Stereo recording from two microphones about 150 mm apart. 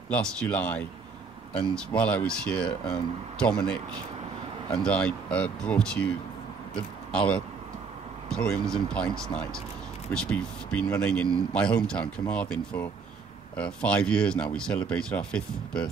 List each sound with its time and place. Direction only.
0.1 s speech: 10° left (ahead or behind)
1.9 s speech: 10° left (ahead or behind)